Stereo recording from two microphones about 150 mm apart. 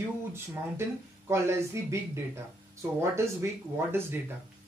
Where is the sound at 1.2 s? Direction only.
15° right (ahead or behind).